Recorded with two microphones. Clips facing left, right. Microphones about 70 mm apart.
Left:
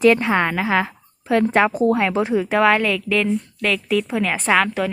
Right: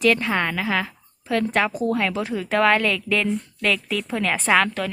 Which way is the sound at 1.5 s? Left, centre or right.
Left.